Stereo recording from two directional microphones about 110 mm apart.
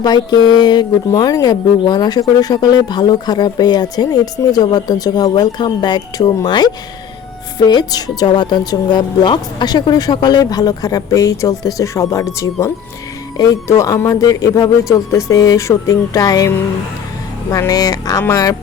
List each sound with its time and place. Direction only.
0.0 s speech: 40° left (ahead or behind)
17.5 s speech: 30° left (ahead or behind)